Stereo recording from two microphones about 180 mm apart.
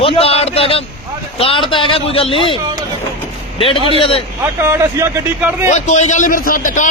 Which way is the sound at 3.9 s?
30° left (ahead or behind).